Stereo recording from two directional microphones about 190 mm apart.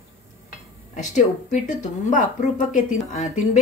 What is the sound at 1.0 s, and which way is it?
Speech, 40° left (ahead or behind).